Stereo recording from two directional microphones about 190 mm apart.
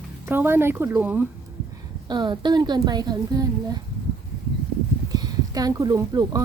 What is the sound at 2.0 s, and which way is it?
Speech, 25° right (ahead or behind).